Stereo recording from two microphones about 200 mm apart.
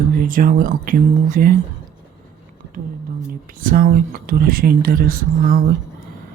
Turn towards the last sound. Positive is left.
turn(degrees=-45)  # may be behind; listen again after turning